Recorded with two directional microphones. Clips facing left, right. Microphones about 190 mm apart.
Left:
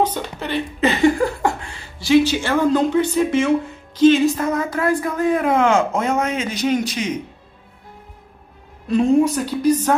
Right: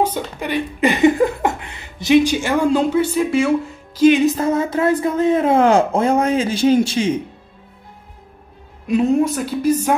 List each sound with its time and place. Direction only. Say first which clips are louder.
0.0 s speech: right 1 dB; 10° right (ahead or behind)
4.4 s speech: right 3 dB; 25° right (ahead or behind)
8.8 s a woman's voice: left 1 dB; 5° right (ahead or behind)